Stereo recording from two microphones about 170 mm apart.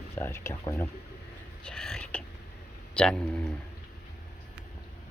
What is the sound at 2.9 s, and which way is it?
Speech, 5° left (ahead or behind).